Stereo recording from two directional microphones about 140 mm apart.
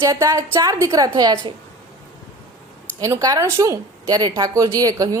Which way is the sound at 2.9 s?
25° right (ahead or behind).